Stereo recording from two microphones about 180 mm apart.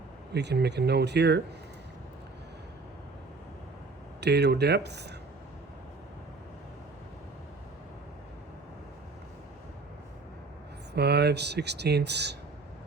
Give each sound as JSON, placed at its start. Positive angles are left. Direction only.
{"t": 0.3, "sound": "speech", "side_deg": -70}
{"t": 4.2, "sound": "speech", "side_deg": -70}
{"t": 10.9, "sound": "speech", "side_deg": -65}